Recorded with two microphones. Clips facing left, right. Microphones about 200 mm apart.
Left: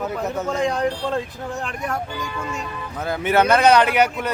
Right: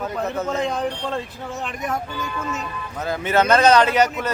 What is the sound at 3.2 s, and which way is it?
Speech, 10° left (ahead or behind).